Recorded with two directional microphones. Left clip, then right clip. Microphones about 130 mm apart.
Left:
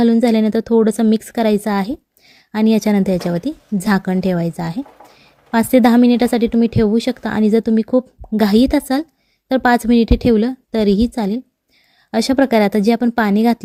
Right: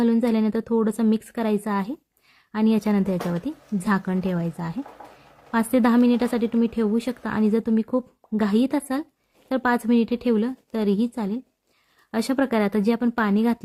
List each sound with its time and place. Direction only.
0.0 s a woman's voice: 40° left (ahead or behind)